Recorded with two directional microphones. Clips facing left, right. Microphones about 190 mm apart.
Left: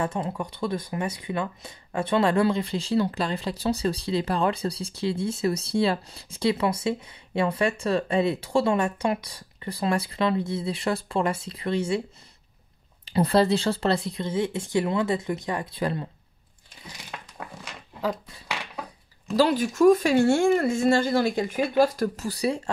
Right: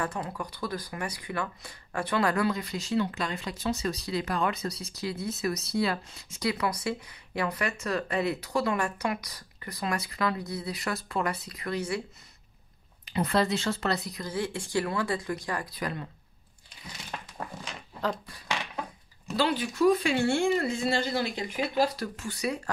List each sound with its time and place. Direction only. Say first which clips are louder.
0.0 s speech: left 5 dB; 25° left (ahead or behind)
13.0 s speech: left 6 dB; 35° left (ahead or behind)
17.6 s dog: left 3 dB; 10° left (ahead or behind)
19.3 s speech: left 6 dB; 45° left (ahead or behind)